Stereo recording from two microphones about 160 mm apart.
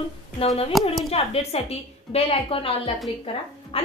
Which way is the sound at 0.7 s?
Centre (ahead or behind).